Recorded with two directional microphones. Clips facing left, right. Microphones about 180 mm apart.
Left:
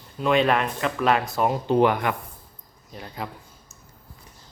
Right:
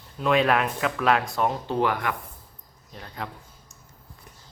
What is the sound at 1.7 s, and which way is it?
Speech, 20° left (ahead or behind).